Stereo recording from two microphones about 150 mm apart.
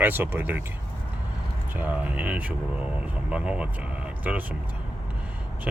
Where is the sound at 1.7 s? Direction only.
10° right (ahead or behind).